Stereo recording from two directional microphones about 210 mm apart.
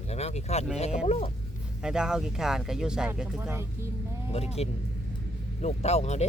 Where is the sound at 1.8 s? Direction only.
5° right (ahead or behind).